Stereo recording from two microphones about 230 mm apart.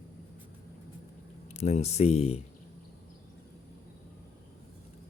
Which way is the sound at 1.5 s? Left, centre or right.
Left.